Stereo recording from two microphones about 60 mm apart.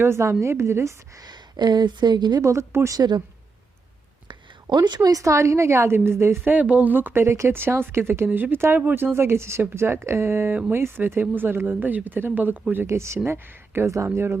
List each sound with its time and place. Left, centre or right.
0.0 s speech: right
2.4 s speech: right
2.9 s speech: right
4.6 s a woman's voice: right
6.4 s speech: right
8.3 s speech: right
9.1 s speech: right
12.9 s speech: right
13.2 s speech: right
13.8 s speech: right